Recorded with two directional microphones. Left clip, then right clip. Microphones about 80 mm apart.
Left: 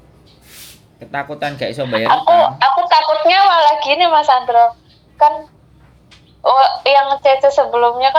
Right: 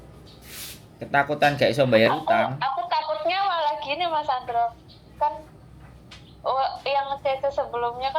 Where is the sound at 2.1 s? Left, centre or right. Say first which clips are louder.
Left 12 dB; left.